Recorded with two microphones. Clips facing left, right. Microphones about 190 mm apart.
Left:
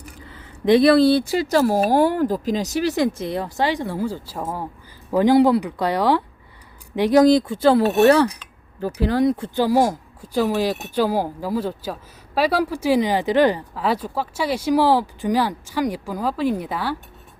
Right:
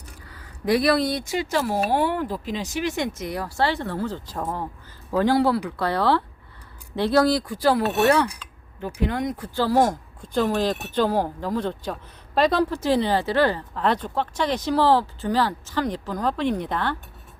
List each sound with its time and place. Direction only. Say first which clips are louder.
0.3 s speech: left 6 dB; 25° left (ahead or behind)
9.6 s speech: even; 10° left (ahead or behind)